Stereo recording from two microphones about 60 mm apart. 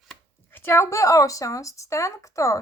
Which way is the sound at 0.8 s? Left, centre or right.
Left.